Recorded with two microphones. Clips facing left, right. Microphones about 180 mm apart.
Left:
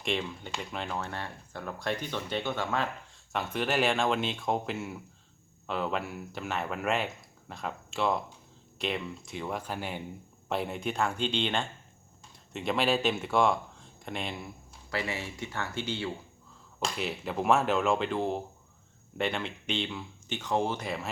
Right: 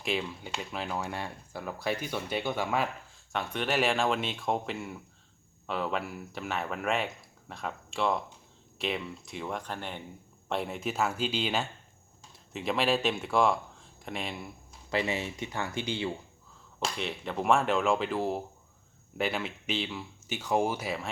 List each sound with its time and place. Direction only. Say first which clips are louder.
0.0 s speech: even; 5° right (ahead or behind)
3.3 s speech: left 1 dB; centre (ahead or behind)
14.8 s speech: right 4 dB; 20° right (ahead or behind)
16.8 s speech: left 1 dB; 5° left (ahead or behind)